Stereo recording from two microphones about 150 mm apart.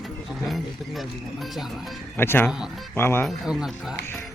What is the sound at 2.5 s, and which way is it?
Speech, 5° right (ahead or behind).